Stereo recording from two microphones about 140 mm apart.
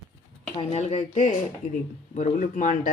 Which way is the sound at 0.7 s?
50° left (ahead or behind).